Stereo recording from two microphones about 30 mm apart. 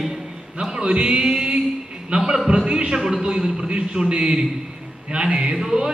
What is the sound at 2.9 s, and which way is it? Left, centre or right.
Speech, centre.